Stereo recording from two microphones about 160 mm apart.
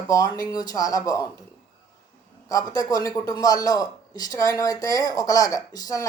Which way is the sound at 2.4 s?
20° left (ahead or behind).